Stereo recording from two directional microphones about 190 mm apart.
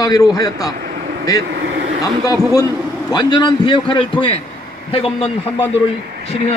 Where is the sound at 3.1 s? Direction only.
25° left (ahead or behind).